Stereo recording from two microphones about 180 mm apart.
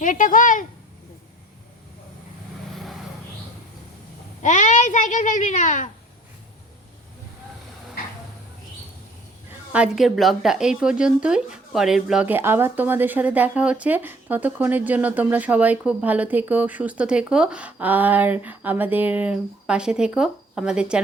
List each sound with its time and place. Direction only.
0.0 s speech: 50° left (ahead or behind)
4.4 s a child's voice: 45° left (ahead or behind)
9.7 s speech: 5° right (ahead or behind)